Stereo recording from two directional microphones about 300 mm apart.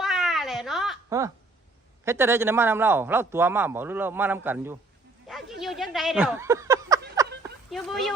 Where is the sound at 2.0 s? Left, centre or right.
Centre.